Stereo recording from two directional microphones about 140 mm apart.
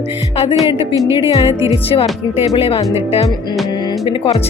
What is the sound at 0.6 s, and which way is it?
Speech, 25° right (ahead or behind).